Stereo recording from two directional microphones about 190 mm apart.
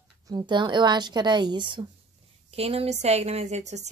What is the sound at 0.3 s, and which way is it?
A woman's voice, 25° right (ahead or behind).